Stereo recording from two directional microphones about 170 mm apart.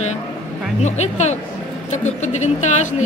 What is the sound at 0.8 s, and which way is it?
A woman's voice, 40° left (ahead or behind).